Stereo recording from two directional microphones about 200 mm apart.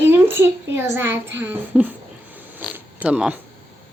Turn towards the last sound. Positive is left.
turn(degrees=-5)  # may be behind; listen again after turning